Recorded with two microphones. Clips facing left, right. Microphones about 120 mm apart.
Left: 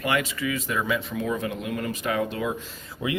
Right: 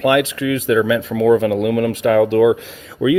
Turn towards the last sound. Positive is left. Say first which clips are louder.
# right 13 dB
turn(degrees=-90)